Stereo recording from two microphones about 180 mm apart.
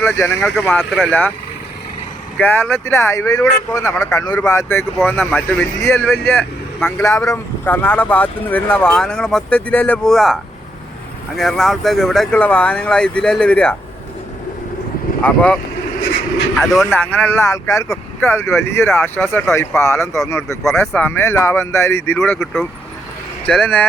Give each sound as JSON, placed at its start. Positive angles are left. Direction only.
{"t": 0.0, "sound": "speech", "side_deg": 15}
{"t": 0.8, "sound": "speech", "side_deg": 0}
{"t": 2.4, "sound": "speech", "side_deg": 10}
{"t": 5.1, "sound": "speech", "side_deg": 5}
{"t": 11.3, "sound": "speech", "side_deg": 0}
{"t": 15.2, "sound": "speech", "side_deg": 10}
{"t": 16.6, "sound": "speech", "side_deg": 0}
{"t": 23.5, "sound": "speech", "side_deg": 5}